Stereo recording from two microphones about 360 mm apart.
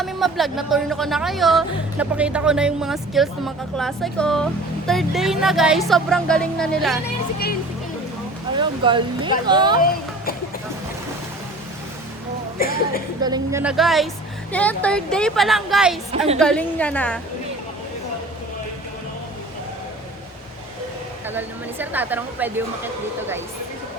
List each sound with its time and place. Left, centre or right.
0.0 s speech: centre
8.5 s speech: centre
12.5 s speech: left
13.2 s speech: centre
21.2 s speech: centre